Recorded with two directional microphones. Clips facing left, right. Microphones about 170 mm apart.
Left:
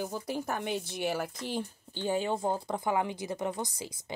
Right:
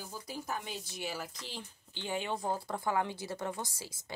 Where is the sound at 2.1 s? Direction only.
35° left (ahead or behind).